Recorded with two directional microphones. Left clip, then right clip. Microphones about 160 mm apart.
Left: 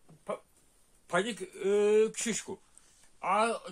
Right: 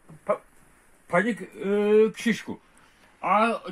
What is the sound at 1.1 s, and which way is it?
Speech, 25° left (ahead or behind).